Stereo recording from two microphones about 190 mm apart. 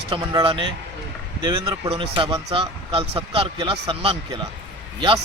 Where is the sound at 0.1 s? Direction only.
25° right (ahead or behind).